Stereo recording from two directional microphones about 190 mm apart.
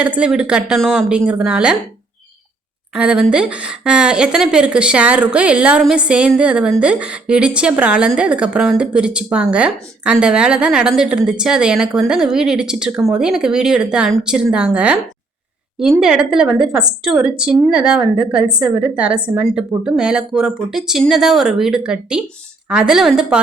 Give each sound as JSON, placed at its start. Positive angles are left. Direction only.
{"t": 0.0, "sound": "speech", "side_deg": -5}
{"t": 2.9, "sound": "a woman's voice", "side_deg": -5}
{"t": 19.5, "sound": "speech", "side_deg": -5}